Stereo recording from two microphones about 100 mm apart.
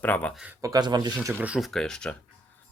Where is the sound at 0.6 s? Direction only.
40° right (ahead or behind).